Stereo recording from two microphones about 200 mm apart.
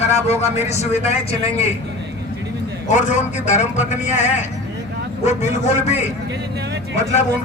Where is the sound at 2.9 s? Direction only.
35° left (ahead or behind).